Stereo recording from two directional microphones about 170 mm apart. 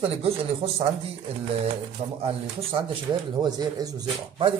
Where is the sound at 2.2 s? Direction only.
35° right (ahead or behind).